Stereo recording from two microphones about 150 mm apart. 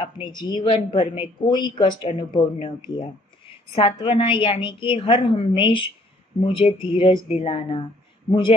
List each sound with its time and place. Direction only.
0.0 s speech: 30° left (ahead or behind)
3.4 s a sound: 40° left (ahead or behind)
4.0 s speech: 35° left (ahead or behind)